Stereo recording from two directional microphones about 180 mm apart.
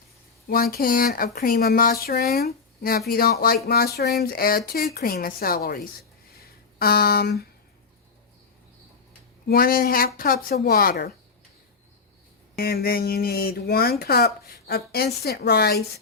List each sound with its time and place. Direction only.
0.4 s speech: 55° left (ahead or behind)
6.3 s a sound: 60° left (ahead or behind)
9.5 s speech: 55° left (ahead or behind)
12.5 s speech: 55° left (ahead or behind)